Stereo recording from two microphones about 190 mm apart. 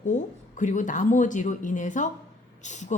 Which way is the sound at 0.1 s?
40° left (ahead or behind).